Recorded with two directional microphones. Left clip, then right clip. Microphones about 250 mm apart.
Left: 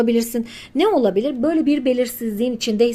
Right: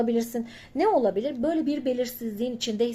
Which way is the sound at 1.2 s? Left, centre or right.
Centre.